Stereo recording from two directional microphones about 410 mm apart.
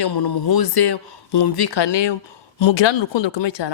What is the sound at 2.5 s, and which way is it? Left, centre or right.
Speech, left.